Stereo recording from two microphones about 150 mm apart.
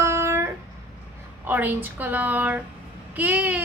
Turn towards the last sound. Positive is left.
turn(degrees=-10)  # may be behind; listen again after turning